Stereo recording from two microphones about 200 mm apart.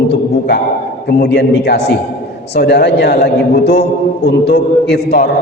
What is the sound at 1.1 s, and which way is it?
A man's voice, 55° left (ahead or behind).